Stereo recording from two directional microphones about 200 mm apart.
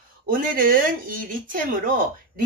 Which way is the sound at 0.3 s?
45° right (ahead or behind).